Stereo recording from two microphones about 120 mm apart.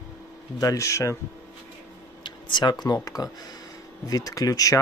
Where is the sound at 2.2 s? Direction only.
40° left (ahead or behind).